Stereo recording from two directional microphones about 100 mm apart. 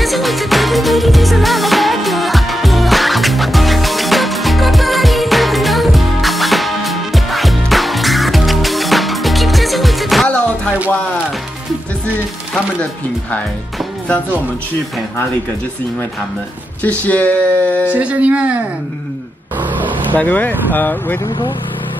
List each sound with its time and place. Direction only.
0.0 s music: centre (ahead or behind)
10.2 s music: 10° left (ahead or behind)
16.8 s speech: 15° left (ahead or behind)
17.8 s speech: 15° right (ahead or behind)
20.1 s speech: 15° left (ahead or behind)